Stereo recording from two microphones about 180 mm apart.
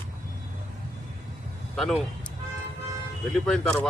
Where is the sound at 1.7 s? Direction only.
Centre (ahead or behind).